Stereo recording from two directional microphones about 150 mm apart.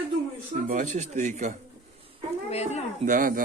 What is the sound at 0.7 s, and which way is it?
Speech, 55° right (ahead or behind).